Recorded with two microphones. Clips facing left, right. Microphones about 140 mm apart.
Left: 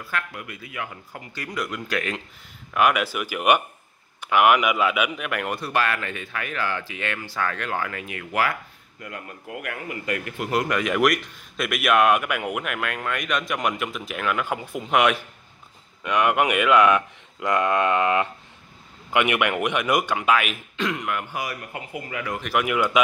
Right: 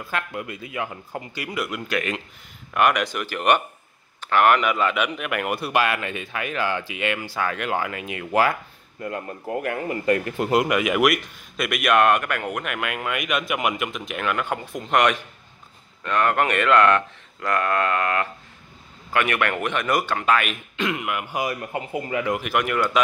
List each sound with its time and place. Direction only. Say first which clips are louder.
0.0 s speech: right 2 dB; 25° right (ahead or behind)
1.3 s a man's voice: even; 10° right (ahead or behind)
5.6 s speech: right 2 dB; 15° right (ahead or behind); by 10.5 s 30° right (ahead or behind)
10.5 s a man's voice: right 3 dB; 15° right (ahead or behind); by 17.0 s 10° left (ahead or behind)
17.4 s a sound: left 1 dB; 20° left (ahead or behind)
19.1 s speech: left 1 dB; 15° left (ahead or behind); by 21.3 s 5° right (ahead or behind)
21.3 s speech: right 5 dB; 25° right (ahead or behind)
22.4 s speech: even; centre (ahead or behind)